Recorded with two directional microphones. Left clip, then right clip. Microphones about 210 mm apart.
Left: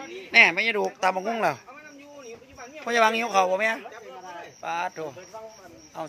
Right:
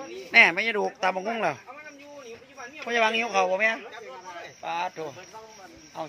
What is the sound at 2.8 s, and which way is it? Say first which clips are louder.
A man's voice: left 2 dB; 15° left (ahead or behind).